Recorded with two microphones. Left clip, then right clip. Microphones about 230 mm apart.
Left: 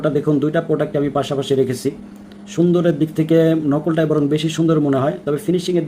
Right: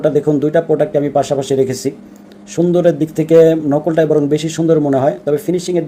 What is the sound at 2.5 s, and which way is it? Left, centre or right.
Speech, centre.